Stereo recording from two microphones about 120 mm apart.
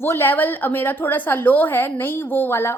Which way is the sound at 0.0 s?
20° left (ahead or behind).